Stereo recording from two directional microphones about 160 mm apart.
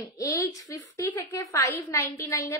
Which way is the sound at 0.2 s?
20° left (ahead or behind).